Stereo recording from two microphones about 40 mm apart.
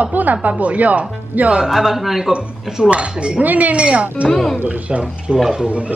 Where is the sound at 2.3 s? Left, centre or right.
Right.